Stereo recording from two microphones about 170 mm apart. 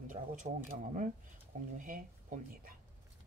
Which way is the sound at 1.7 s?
50° right (ahead or behind).